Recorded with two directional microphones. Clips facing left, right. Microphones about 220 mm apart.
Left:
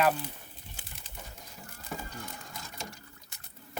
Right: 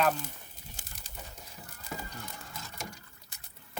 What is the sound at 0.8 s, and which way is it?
Pigeon, 40° right (ahead or behind).